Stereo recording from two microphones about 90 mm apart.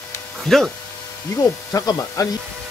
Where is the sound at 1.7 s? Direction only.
40° left (ahead or behind).